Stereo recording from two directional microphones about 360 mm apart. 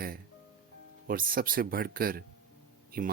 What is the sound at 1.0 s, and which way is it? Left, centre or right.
A man's voice, right.